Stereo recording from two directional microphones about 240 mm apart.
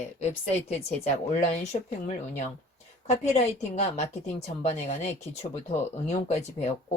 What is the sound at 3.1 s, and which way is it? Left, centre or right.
Speech, left.